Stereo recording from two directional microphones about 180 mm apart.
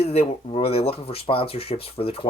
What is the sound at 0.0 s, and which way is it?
Speech, 35° left (ahead or behind).